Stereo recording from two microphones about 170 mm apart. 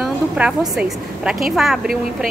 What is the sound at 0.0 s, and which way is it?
A woman's voice, 5° right (ahead or behind).